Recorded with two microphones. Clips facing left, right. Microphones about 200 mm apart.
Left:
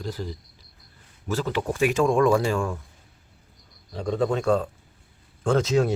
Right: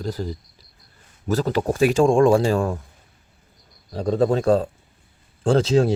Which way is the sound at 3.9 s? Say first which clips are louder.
Right 5 dB; 40° right (ahead or behind).